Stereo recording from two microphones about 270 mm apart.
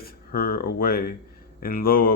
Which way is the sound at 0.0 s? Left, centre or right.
Left.